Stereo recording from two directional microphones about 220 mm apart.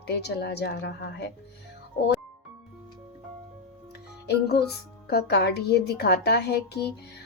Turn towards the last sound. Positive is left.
turn(degrees=50)  # may be behind; listen again after turning